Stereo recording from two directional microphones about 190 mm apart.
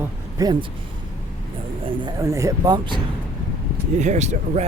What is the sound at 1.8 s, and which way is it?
Speech, 20° right (ahead or behind).